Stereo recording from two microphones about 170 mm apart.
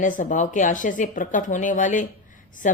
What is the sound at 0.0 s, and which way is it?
Speech, 50° left (ahead or behind).